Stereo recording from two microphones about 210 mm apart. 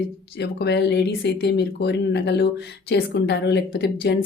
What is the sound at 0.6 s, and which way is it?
A woman's voice, 55° left (ahead or behind).